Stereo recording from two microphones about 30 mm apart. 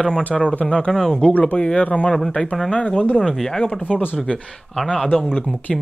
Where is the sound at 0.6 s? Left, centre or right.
Left.